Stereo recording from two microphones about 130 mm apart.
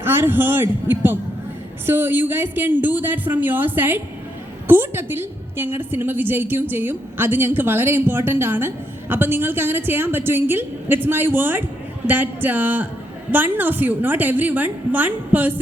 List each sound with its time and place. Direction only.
0.0 s a woman's voice: 20° right (ahead or behind)